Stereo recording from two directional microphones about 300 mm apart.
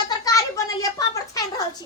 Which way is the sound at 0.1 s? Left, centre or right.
Centre.